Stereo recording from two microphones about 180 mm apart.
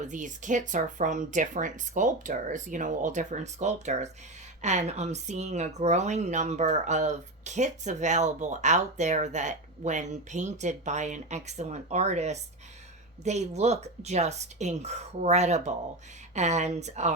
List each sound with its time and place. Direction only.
0.0 s a woman's voice: 45° right (ahead or behind)